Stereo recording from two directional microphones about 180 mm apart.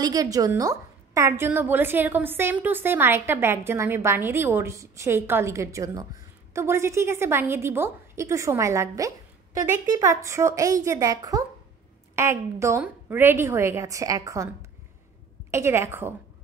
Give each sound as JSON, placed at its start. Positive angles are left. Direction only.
{"t": 0.0, "sound": "a woman's voice", "side_deg": -20}
{"t": 15.5, "sound": "a woman's voice", "side_deg": -15}